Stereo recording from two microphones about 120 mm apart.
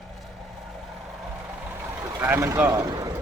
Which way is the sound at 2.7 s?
35° right (ahead or behind).